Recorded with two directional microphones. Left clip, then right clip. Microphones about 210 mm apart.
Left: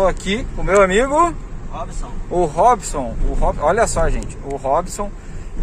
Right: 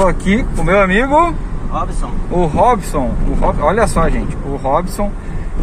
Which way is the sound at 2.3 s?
20° left (ahead or behind).